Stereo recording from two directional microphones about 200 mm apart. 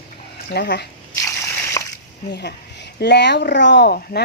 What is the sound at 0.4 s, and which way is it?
Speech, 55° left (ahead or behind).